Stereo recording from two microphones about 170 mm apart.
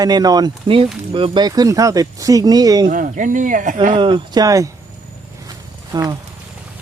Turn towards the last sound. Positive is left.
turn(degrees=-25)  # may be behind; listen again after turning